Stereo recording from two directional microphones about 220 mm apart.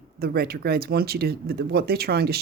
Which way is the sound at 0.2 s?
45° right (ahead or behind).